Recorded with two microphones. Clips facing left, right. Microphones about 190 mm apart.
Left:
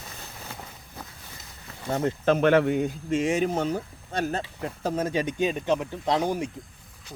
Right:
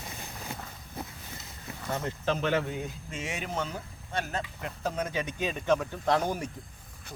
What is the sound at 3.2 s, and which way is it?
Speech, 40° left (ahead or behind).